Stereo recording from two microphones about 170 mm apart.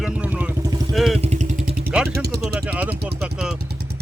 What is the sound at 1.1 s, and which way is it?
Vehicle, 40° right (ahead or behind).